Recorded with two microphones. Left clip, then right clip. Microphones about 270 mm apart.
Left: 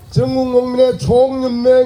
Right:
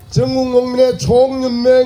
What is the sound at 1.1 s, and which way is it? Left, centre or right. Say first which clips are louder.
Speech: right 1 dB; right.